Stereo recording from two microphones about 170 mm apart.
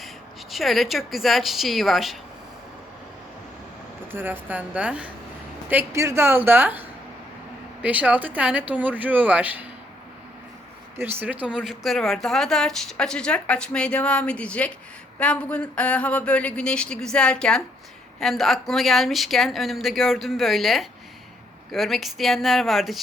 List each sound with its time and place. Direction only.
0.5 s speech: centre (ahead or behind)
4.1 s speech: 10° right (ahead or behind)
10.9 s speech: 10° right (ahead or behind)